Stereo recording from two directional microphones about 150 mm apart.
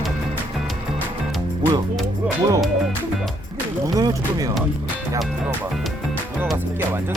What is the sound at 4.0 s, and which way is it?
Speech, 25° right (ahead or behind).